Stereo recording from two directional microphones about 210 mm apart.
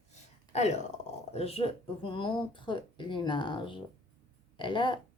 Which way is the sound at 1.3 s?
30° left (ahead or behind).